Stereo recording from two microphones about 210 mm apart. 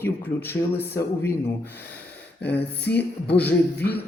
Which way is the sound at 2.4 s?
55° left (ahead or behind).